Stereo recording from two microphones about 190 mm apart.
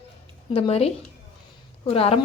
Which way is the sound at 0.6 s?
30° left (ahead or behind).